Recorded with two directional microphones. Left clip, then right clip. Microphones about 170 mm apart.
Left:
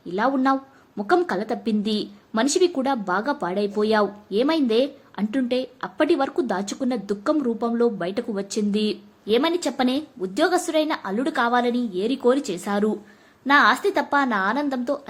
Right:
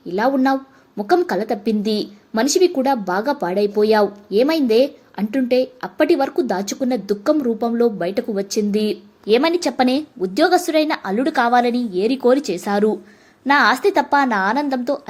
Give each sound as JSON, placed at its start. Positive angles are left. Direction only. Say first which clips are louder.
{"t": 0.1, "sound": "speech", "louder": "right 4 dB", "side_deg": -15}
{"t": 9.2, "sound": "a woman's voice", "louder": "right 5 dB", "side_deg": -25}